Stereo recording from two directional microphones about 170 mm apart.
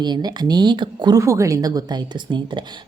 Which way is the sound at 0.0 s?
25° right (ahead or behind).